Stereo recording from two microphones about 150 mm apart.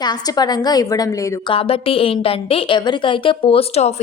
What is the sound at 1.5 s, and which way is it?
A woman's voice, 40° left (ahead or behind).